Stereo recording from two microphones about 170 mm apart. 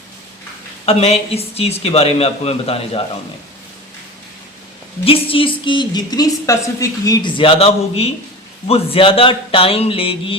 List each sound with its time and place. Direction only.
0.9 s speech: 35° left (ahead or behind)
5.0 s a woman's voice: 30° left (ahead or behind)